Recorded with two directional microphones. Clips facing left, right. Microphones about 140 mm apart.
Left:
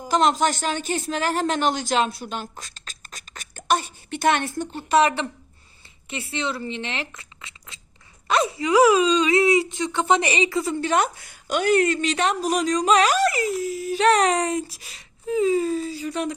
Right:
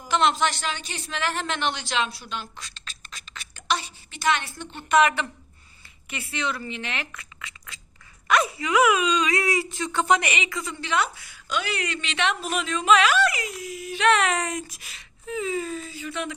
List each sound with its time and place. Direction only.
0.1 s a woman's voice: 40° left (ahead or behind)